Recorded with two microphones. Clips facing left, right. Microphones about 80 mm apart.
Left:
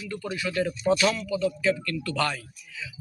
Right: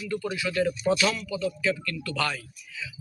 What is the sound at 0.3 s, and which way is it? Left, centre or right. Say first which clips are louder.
A man's voice: even; left.